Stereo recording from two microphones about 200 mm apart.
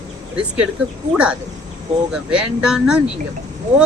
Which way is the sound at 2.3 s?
5° right (ahead or behind).